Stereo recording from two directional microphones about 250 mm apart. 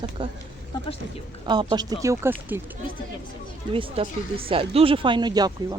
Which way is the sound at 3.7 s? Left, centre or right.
Right.